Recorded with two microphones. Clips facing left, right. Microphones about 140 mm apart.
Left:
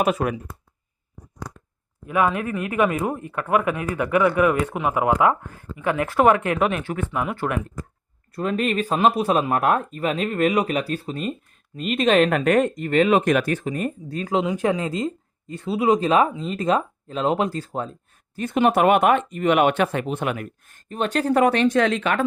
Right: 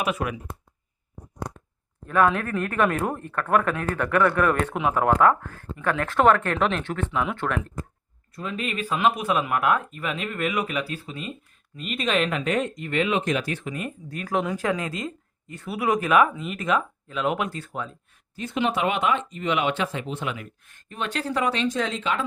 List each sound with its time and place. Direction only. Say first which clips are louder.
0.0 s speech: left 5 dB; 40° left (ahead or behind)
2.0 s speech: even; 10° left (ahead or behind)
8.4 s speech: left 7 dB; 50° left (ahead or behind)
14.1 s speech: left 2 dB; 25° left (ahead or behind)
18.3 s speech: left 6 dB; 50° left (ahead or behind)